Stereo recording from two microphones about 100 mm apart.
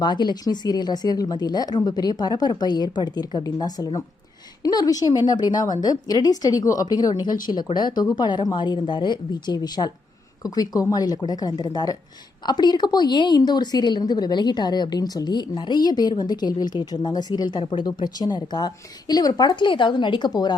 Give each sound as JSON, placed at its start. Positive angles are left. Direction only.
{"t": 0.0, "sound": "a woman's voice", "side_deg": 45}